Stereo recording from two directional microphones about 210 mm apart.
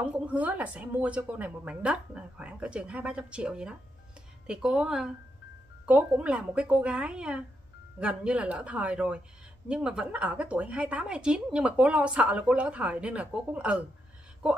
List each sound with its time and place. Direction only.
0.0 s a woman's voice: 5° right (ahead or behind)